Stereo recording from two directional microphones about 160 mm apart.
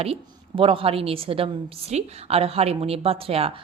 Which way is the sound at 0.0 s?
35° right (ahead or behind).